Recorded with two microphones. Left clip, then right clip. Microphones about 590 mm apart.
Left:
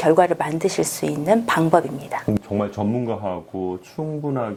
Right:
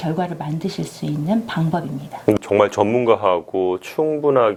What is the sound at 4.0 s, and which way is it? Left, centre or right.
Speech, centre.